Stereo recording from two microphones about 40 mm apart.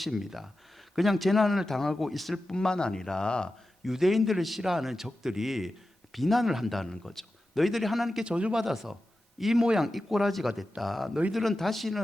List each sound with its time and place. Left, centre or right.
0.0 s a man's voice: centre
2.6 s speech: centre
3.8 s a man's voice: centre
6.7 s a man's voice: centre
8.2 s speech: right
8.5 s a man's voice: centre